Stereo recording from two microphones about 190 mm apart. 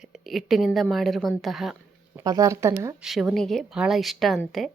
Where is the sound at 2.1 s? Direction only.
15° right (ahead or behind).